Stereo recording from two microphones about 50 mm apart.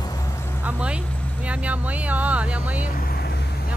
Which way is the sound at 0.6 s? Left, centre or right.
Right.